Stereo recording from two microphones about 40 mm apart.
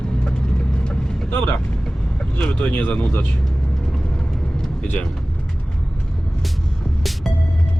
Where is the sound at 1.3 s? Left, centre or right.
Left.